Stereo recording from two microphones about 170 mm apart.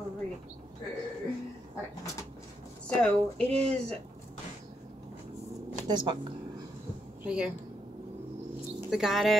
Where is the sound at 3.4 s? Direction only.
40° right (ahead or behind).